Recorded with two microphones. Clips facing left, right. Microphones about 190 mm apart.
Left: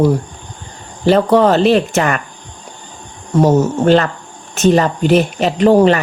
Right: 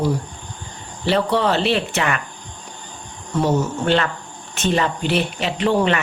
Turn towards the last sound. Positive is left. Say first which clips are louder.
# left 8 dB
turn(degrees=40)  # may be behind; listen again after turning